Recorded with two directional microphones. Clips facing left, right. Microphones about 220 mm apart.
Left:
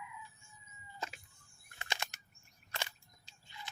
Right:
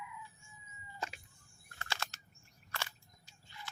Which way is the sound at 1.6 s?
20° left (ahead or behind).